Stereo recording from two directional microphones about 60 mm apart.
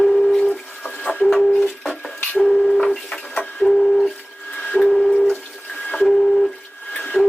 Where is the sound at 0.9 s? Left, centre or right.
Left.